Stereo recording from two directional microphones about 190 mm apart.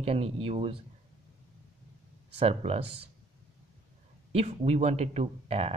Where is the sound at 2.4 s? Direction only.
35° right (ahead or behind).